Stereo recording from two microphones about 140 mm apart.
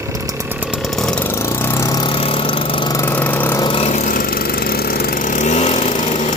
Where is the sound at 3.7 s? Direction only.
50° left (ahead or behind).